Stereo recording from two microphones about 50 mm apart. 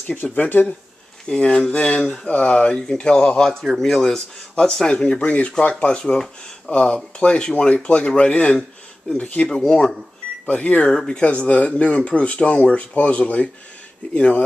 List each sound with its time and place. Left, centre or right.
0.1 s speech: left
1.2 s speech: centre
2.2 s speech: left
3.6 s speech: centre; by 9.5 s left
9.5 s speech: centre
10.4 s speech: left
10.9 s speech: centre